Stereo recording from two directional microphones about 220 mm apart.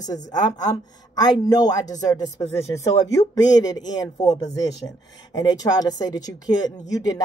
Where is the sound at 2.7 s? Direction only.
15° left (ahead or behind).